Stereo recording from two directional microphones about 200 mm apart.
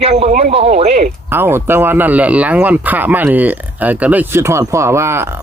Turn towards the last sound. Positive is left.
turn(degrees=-15)  # may be behind; listen again after turning